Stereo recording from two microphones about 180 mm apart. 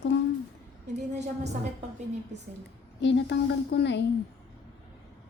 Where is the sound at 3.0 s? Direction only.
85° left.